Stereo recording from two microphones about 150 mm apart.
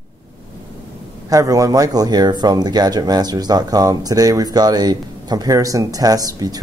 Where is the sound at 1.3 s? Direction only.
20° right (ahead or behind).